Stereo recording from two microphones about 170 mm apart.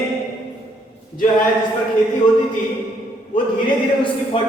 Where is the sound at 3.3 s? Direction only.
30° left (ahead or behind).